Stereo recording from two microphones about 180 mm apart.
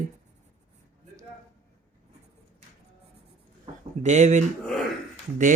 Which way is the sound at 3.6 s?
40° right (ahead or behind).